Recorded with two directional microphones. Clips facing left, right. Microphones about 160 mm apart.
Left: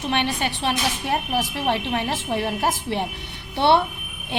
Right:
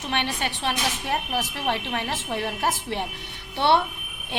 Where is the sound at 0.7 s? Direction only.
30° left (ahead or behind).